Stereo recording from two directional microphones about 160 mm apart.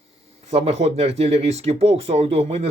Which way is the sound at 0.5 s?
40° right (ahead or behind).